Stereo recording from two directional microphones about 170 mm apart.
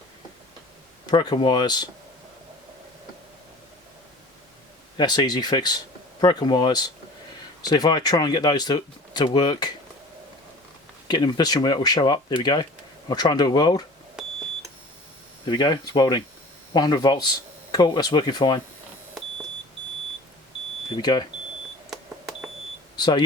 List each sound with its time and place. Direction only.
1.0 s speech: 25° left (ahead or behind)
4.9 s speech: 25° left (ahead or behind)
11.1 s speech: 25° left (ahead or behind)
15.4 s speech: 25° left (ahead or behind)
20.9 s speech: 25° left (ahead or behind)
21.8 s beep: centre (ahead or behind)
23.0 s speech: 25° left (ahead or behind)